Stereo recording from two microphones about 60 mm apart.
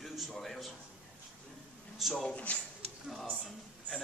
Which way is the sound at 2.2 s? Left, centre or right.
Centre.